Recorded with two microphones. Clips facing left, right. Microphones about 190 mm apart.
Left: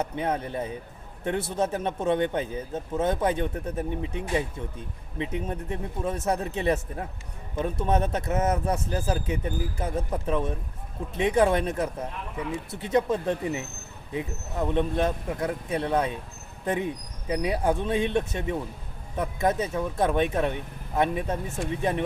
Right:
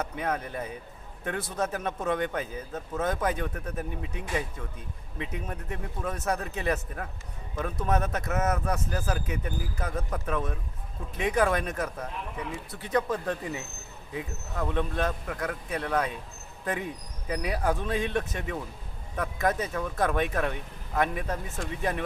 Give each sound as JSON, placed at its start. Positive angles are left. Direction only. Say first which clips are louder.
{"t": 0.0, "sound": "a man's voice", "louder": "left 3 dB", "side_deg": 30}
{"t": 17.2, "sound": "a man's voice", "louder": "left 3 dB", "side_deg": 25}